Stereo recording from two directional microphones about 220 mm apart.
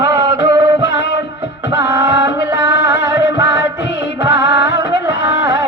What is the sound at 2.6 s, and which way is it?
Music, 50° left (ahead or behind).